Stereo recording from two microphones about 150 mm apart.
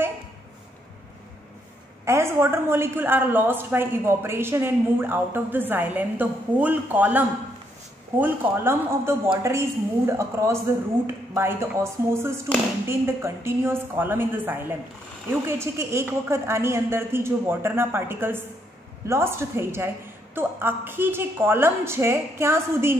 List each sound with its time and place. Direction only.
2.0 s a woman's voice: 15° right (ahead or behind)